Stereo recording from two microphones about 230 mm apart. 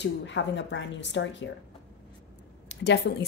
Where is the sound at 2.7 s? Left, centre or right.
Left.